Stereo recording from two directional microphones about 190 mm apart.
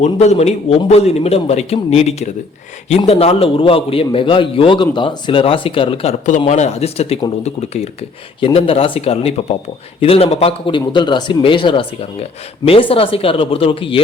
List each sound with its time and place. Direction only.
0.0 s a man's voice: 35° left (ahead or behind)